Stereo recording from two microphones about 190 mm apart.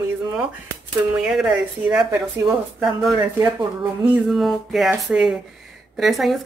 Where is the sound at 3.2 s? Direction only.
20° right (ahead or behind).